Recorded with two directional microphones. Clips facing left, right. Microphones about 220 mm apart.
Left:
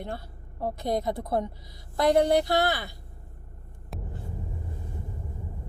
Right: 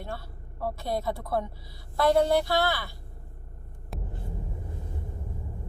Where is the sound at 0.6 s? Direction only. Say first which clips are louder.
Left 2 dB; 15° left (ahead or behind).